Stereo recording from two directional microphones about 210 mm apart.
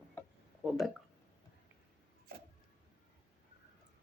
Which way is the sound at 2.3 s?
45° right (ahead or behind).